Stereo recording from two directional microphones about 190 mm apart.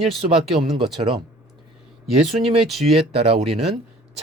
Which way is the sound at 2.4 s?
30° right (ahead or behind).